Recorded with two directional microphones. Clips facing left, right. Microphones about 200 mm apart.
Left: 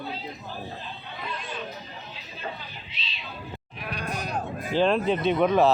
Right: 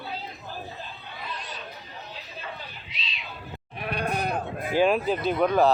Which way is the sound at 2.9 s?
30° left (ahead or behind).